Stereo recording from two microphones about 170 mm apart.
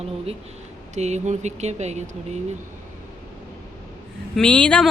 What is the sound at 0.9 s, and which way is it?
Speech, 40° right (ahead or behind).